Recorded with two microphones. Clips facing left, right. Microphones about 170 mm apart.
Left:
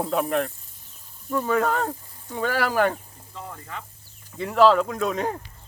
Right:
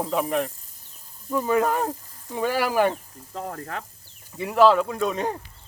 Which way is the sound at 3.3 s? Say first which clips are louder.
Right 5 dB; 50° right (ahead or behind).